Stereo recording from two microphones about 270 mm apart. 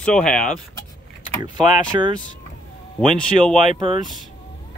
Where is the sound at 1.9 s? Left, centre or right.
Centre.